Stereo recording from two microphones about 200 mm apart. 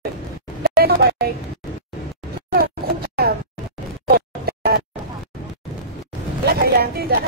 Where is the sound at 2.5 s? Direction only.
50° right (ahead or behind).